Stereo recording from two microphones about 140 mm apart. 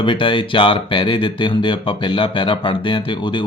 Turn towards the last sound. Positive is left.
turn(degrees=35)  # may be behind; listen again after turning